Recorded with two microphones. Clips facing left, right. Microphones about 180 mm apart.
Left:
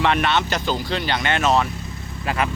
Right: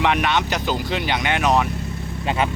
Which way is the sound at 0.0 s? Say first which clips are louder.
Even; 15° right (ahead or behind).